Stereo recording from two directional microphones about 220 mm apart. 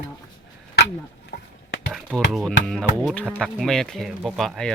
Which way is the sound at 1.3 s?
45° left (ahead or behind).